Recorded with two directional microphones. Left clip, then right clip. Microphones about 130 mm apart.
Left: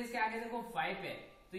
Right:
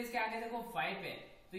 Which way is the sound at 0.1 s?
Centre (ahead or behind).